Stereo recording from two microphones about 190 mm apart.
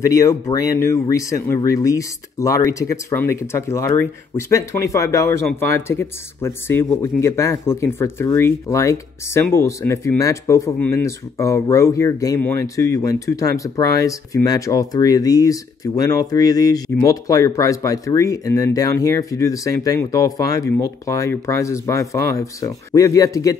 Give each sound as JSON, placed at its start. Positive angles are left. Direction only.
{"t": 0.0, "sound": "speech", "side_deg": 15}